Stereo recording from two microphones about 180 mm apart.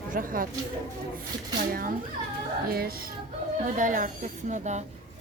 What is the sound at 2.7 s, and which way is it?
Music, 55° right (ahead or behind).